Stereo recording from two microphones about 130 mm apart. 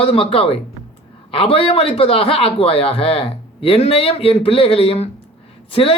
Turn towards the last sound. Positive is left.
turn(degrees=45)  # may be behind; listen again after turning